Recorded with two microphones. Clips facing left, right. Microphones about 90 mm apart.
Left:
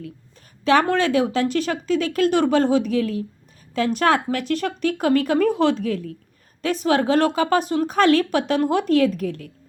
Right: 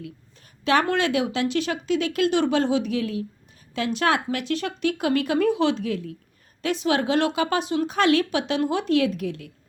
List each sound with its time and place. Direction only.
0.6 s speech: 35° left (ahead or behind)